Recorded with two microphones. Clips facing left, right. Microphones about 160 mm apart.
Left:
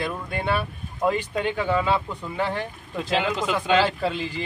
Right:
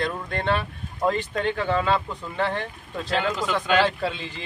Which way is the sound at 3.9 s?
5° left (ahead or behind).